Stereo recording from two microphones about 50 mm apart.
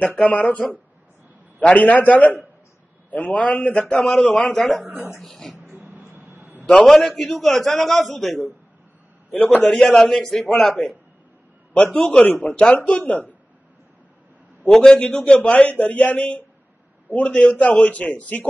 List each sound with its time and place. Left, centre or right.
0.0 s a man's voice: left
3.9 s a man's voice: centre
4.2 s a man's voice: left
4.5 s a man's voice: centre
4.8 s a woman's voice: right
5.2 s a man's voice: centre
5.6 s a sound: right
6.9 s a man's voice: centre
9.3 s a man's voice: left
9.7 s a man's voice: centre
11.7 s a man's voice: left
14.6 s a man's voice: centre; by 18.5 s left